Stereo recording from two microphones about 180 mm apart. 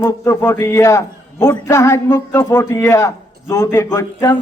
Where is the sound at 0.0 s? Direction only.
15° left (ahead or behind).